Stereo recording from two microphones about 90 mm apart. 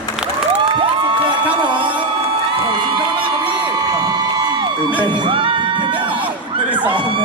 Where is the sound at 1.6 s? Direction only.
65° right (ahead or behind).